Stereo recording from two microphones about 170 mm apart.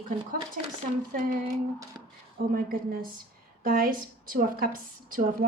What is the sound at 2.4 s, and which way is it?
Speech, 65° right (ahead or behind).